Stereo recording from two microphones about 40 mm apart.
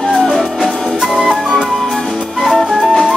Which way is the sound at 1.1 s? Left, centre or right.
Centre.